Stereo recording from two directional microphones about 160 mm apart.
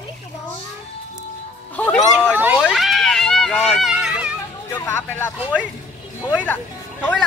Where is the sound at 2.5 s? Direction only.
Centre (ahead or behind).